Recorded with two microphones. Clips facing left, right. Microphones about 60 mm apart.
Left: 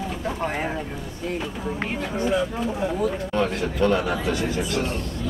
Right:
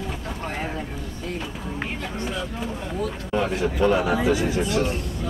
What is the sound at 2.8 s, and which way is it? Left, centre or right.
Speech, centre.